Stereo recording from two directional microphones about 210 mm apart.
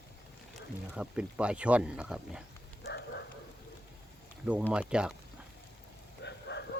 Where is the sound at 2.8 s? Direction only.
55° left (ahead or behind).